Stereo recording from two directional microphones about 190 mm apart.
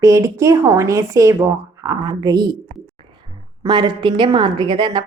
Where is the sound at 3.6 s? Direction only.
25° right (ahead or behind).